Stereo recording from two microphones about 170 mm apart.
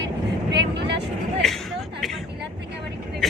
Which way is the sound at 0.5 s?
90° right.